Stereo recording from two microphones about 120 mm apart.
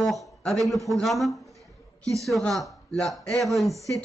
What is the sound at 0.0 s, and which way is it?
A man's voice, centre (ahead or behind).